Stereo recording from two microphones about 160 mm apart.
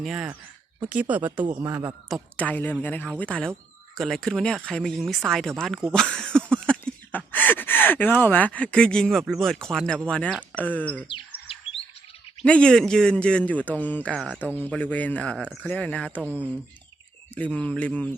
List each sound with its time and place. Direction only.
0.0 s speech: 5° right (ahead or behind)
1.5 s a man's voice: 30° right (ahead or behind)
2.3 s speech: 10° left (ahead or behind)
6.5 s a sound: 5° left (ahead or behind)
7.3 s speech: 10° left (ahead or behind)
11.1 s chirp: 35° left (ahead or behind)
12.4 s speech: 5° left (ahead or behind)
16.2 s speech: 10° right (ahead or behind)
17.3 s speech: 10° left (ahead or behind)